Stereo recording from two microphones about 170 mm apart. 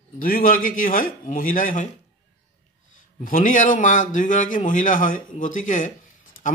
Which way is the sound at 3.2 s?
55° left (ahead or behind).